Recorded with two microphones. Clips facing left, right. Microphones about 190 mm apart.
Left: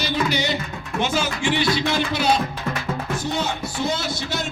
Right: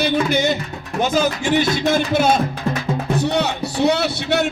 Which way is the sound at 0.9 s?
40° right (ahead or behind).